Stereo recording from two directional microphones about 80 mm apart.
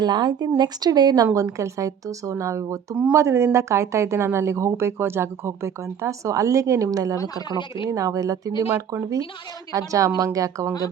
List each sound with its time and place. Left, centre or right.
0.0 s speech: right
1.3 s a woman's voice: right